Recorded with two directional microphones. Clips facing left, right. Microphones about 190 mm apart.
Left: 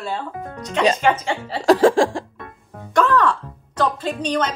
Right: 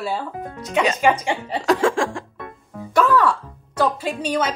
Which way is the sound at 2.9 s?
10° right (ahead or behind).